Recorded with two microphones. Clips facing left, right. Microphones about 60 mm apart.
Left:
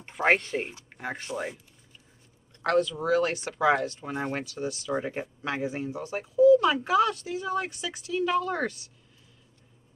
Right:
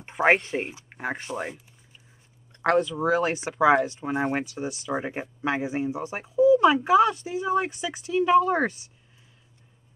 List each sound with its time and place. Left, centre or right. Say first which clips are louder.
0.4 s speech: right 2 dB; centre
0.8 s a sound: right 4 dB; right
1.1 s speech: right 1 dB; centre
2.8 s speech: right 1 dB; centre
7.5 s speech: right 7 dB; centre
8.0 s speech: right 7 dB; right